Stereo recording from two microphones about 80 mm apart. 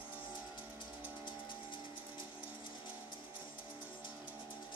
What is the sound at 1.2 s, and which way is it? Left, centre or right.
Music, left.